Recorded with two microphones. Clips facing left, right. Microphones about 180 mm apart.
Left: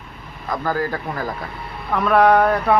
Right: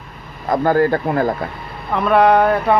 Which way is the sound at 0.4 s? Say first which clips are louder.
Right 8 dB; 55° right (ahead or behind).